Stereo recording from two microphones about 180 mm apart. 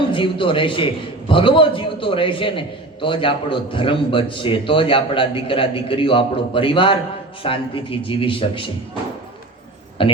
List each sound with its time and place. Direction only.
0.1 s a man's voice: 30° left (ahead or behind)
10.0 s a man's voice: 30° left (ahead or behind)